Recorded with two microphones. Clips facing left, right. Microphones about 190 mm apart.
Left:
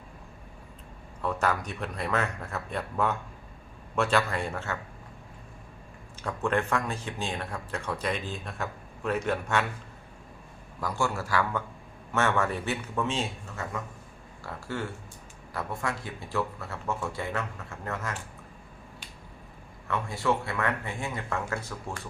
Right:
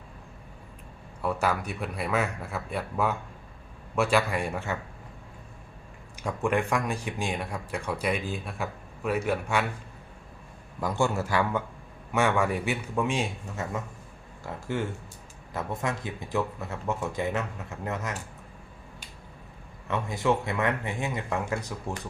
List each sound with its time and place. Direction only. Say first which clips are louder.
1.2 s speech: right 1 dB; 10° right (ahead or behind)
6.2 s speech: right 1 dB; 10° right (ahead or behind)
10.8 s speech: right 3 dB; 20° right (ahead or behind)
19.9 s speech: right 2 dB; 20° right (ahead or behind)